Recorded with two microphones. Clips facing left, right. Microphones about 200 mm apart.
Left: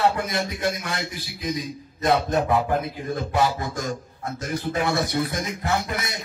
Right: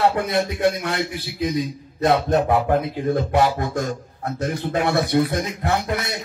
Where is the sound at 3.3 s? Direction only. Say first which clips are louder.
Right 4 dB; 60° right (ahead or behind).